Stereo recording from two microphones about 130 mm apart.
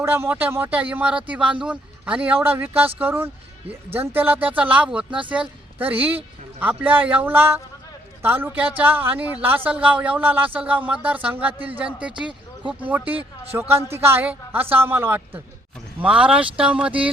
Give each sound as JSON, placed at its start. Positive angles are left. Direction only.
{"t": 0.0, "sound": "a woman's voice", "side_deg": -15}